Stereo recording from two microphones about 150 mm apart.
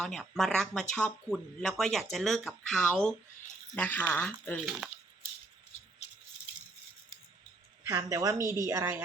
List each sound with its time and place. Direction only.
0.0 s speech: centre (ahead or behind)
4.8 s speech: centre (ahead or behind)
7.9 s a woman's voice: 20° right (ahead or behind)